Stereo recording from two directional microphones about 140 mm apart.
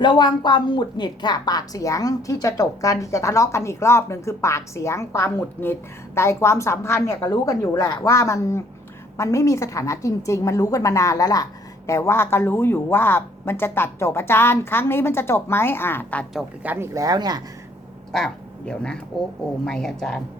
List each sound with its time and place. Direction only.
0.0 s a woman's voice: 35° left (ahead or behind); by 16.2 s 15° left (ahead or behind)
16.7 s speech: 20° right (ahead or behind)
18.1 s speech: 5° left (ahead or behind)